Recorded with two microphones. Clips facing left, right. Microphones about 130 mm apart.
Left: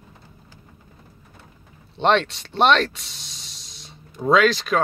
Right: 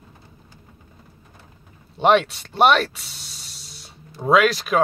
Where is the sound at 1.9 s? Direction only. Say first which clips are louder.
Right 2 dB; 10° right (ahead or behind).